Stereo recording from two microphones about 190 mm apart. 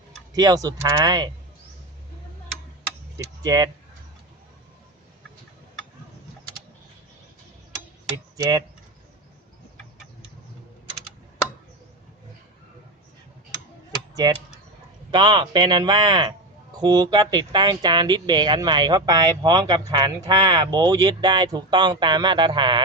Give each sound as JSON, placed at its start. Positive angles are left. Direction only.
{"t": 0.3, "sound": "speech", "side_deg": -20}
{"t": 3.4, "sound": "speech", "side_deg": -20}
{"t": 8.4, "sound": "speech", "side_deg": -20}
{"t": 15.1, "sound": "speech", "side_deg": -25}